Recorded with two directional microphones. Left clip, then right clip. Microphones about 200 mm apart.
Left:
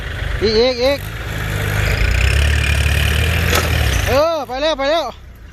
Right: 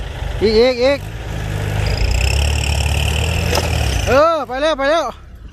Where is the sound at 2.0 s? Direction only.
10° left (ahead or behind).